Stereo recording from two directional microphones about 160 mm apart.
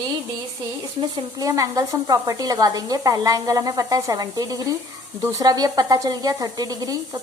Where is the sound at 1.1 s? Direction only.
20° right (ahead or behind).